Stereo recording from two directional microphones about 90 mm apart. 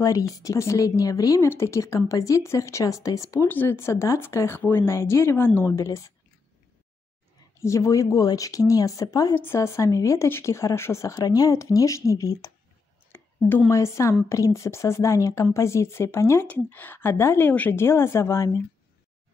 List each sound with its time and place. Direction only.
0.3 s speech: 40° left (ahead or behind)
3.4 s speech: 25° left (ahead or behind)
5.7 s speech: 35° left (ahead or behind)
7.5 s speech: 30° left (ahead or behind)
9.3 s speech: 25° left (ahead or behind)
13.1 s a sound: 25° left (ahead or behind)
13.7 s speech: 30° left (ahead or behind)